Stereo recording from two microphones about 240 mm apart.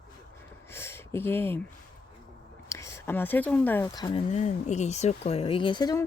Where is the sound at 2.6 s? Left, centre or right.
Centre.